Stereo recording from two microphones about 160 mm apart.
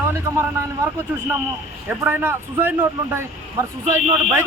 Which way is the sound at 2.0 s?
15° right (ahead or behind).